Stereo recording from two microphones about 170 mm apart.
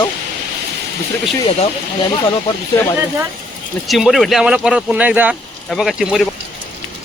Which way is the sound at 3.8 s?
Centre (ahead or behind).